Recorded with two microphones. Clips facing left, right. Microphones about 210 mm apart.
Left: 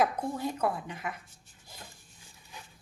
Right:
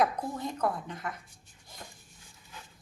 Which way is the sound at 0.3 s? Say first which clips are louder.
Even; 5° left (ahead or behind).